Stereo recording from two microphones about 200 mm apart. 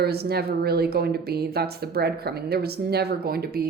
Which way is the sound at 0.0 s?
50° right (ahead or behind).